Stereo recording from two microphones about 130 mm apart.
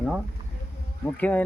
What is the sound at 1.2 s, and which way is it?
Speech, 10° left (ahead or behind).